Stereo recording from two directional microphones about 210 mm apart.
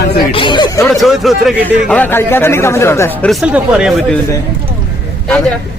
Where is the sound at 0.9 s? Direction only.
Centre (ahead or behind).